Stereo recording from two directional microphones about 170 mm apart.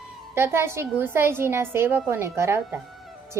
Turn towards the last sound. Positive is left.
turn(degrees=-15)  # may be behind; listen again after turning